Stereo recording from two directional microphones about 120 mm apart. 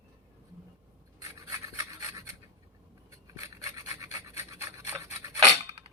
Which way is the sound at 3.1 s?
30° right (ahead or behind).